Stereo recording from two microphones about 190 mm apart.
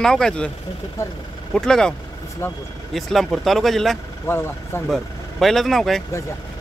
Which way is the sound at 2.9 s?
Centre (ahead or behind).